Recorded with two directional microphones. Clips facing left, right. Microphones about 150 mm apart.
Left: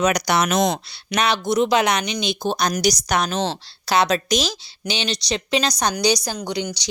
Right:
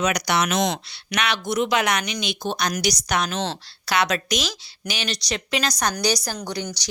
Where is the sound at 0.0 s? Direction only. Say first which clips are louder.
Left 3 dB; 40° left (ahead or behind).